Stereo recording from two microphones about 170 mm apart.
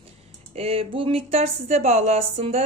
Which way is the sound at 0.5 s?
35° right (ahead or behind).